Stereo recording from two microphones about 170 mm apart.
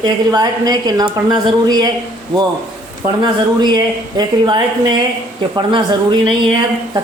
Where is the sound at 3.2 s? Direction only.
25° right (ahead or behind).